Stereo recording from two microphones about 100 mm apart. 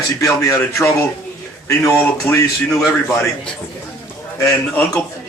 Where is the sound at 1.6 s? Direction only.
25° left (ahead or behind).